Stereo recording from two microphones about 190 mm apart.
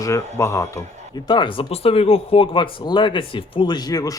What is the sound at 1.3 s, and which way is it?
Speech, 25° left (ahead or behind).